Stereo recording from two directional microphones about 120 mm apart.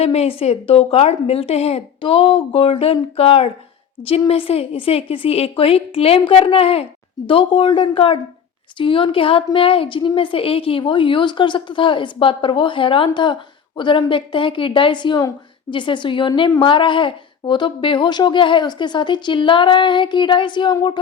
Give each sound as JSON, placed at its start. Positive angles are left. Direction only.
{"t": 0.0, "sound": "a woman's voice", "side_deg": 60}